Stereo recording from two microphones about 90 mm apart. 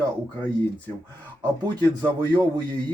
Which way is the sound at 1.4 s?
55° right (ahead or behind).